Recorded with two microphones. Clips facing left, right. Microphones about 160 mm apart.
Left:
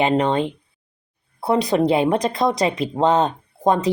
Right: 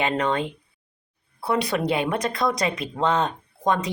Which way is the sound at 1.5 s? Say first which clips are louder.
Left 6 dB; 25° left (ahead or behind).